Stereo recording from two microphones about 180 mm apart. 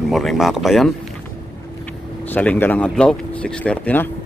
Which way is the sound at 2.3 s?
10° left (ahead or behind).